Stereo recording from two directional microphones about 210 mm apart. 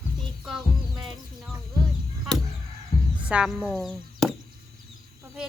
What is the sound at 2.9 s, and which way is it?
Music, 40° left (ahead or behind).